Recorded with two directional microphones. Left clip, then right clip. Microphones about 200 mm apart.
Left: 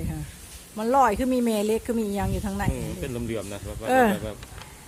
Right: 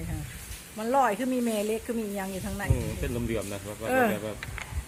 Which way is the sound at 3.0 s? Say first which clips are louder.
Left 1 dB; 5° left (ahead or behind).